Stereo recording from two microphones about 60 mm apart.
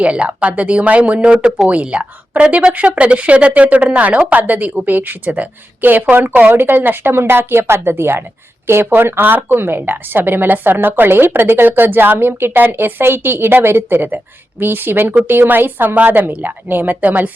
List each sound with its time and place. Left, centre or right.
0.0 s a woman's voice: centre